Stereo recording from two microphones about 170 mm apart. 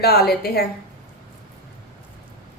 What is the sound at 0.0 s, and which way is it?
Speech, 65° left (ahead or behind).